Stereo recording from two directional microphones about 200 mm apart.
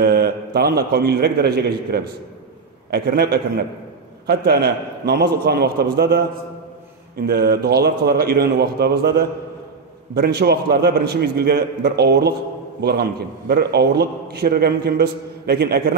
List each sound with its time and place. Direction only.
0.0 s a man's voice: 50° right (ahead or behind)
13.5 s a man's voice: 55° right (ahead or behind)